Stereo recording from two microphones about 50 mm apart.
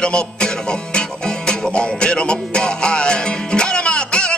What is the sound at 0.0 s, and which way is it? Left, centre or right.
Music, centre.